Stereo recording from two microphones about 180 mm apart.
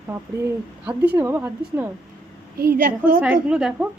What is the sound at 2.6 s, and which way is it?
Speech, 55° right (ahead or behind).